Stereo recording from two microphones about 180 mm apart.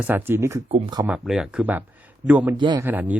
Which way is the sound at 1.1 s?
Centre (ahead or behind).